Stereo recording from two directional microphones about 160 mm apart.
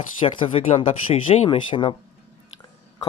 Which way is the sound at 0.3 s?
30° left (ahead or behind).